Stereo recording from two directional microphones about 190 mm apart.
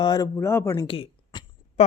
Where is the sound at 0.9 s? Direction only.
25° left (ahead or behind).